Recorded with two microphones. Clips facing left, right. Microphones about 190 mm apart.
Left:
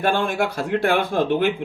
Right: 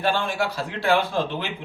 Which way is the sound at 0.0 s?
50° left (ahead or behind).